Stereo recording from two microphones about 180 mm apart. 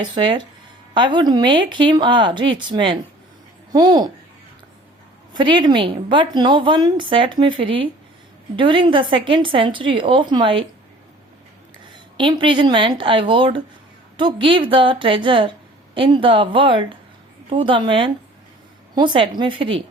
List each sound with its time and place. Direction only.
0.1 s a woman's voice: 25° right (ahead or behind)
5.3 s a woman's voice: 25° right (ahead or behind)
12.1 s a woman's voice: 25° right (ahead or behind)